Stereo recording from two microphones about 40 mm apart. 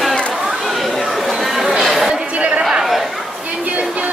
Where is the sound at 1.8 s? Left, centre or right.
Centre.